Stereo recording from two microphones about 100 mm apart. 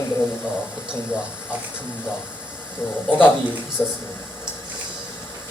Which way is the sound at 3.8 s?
20° left (ahead or behind).